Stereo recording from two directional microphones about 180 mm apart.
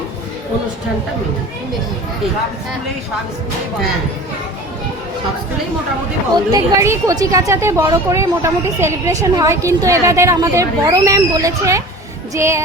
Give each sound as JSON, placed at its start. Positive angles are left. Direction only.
{"t": 6.5, "sound": "speech", "side_deg": -20}